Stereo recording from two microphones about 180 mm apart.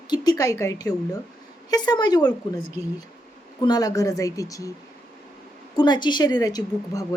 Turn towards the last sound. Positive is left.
turn(degrees=20)  # may be behind; listen again after turning